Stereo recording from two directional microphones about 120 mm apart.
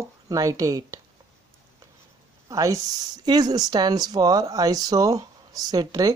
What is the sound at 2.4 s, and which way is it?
Speech, 30° right (ahead or behind).